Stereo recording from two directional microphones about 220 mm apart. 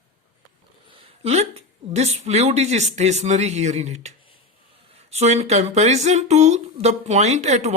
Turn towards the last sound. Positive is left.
turn(degrees=-30)  # may be behind; listen again after turning